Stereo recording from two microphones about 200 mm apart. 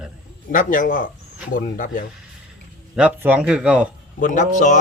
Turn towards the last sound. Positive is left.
turn(degrees=40)  # may be behind; listen again after turning